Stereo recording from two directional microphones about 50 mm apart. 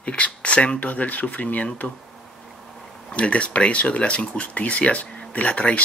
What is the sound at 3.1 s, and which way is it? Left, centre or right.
Speech, left.